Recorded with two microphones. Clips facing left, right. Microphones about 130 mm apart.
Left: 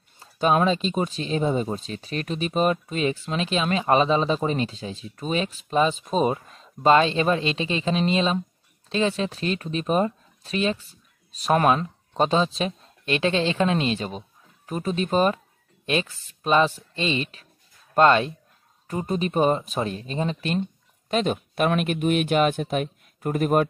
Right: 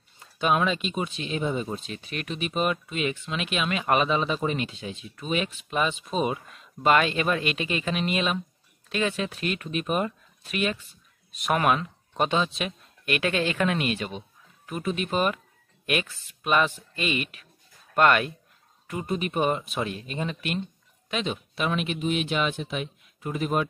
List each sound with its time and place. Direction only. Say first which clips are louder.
0.2 s speech: left 4 dB; 35° left (ahead or behind)
21.1 s speech: left 6 dB; 50° left (ahead or behind)